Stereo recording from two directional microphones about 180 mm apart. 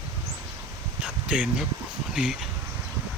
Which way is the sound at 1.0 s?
5° right (ahead or behind).